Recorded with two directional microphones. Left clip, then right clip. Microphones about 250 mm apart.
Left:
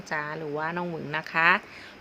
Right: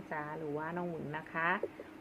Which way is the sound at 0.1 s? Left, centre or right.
Left.